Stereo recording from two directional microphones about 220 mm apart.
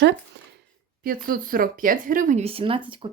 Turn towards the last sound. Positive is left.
turn(degrees=-25)  # may be behind; listen again after turning